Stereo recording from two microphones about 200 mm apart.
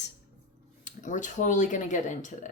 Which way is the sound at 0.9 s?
40° left (ahead or behind).